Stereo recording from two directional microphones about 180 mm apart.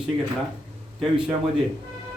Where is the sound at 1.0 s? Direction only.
5° right (ahead or behind).